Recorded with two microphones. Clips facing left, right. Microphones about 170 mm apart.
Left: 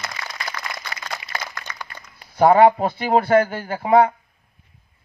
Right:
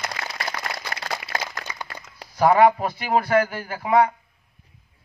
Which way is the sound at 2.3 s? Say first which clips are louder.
Left 3 dB; 30° left (ahead or behind).